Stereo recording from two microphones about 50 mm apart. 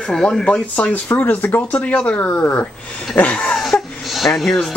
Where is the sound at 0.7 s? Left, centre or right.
Left.